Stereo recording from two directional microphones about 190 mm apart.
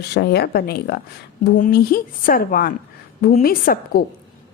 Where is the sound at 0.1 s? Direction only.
60° left (ahead or behind).